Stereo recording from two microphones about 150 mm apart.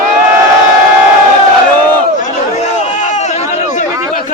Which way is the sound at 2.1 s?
55° left (ahead or behind).